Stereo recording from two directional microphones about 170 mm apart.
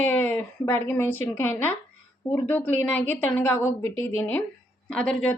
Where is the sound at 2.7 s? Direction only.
10° left (ahead or behind).